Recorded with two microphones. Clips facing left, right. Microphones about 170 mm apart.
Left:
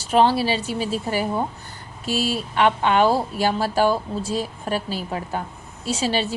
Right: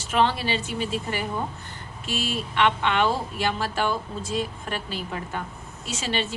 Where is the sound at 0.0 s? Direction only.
35° left (ahead or behind).